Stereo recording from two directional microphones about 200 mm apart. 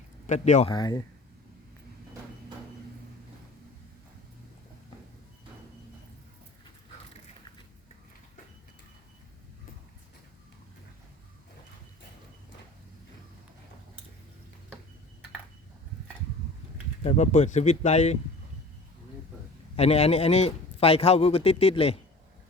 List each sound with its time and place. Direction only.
0.3 s speech: 35° left (ahead or behind)
0.7 s speech: 20° left (ahead or behind)
17.0 s speech: 35° left (ahead or behind)
19.7 s speech: 30° left (ahead or behind)